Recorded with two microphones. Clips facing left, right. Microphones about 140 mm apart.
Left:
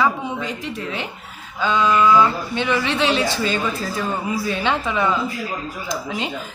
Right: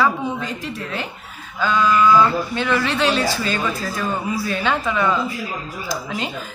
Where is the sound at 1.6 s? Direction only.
25° left (ahead or behind).